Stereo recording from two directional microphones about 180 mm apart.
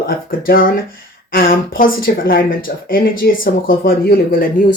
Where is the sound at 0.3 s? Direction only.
55° left (ahead or behind).